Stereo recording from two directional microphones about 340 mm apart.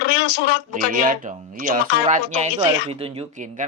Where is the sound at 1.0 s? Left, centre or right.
Right.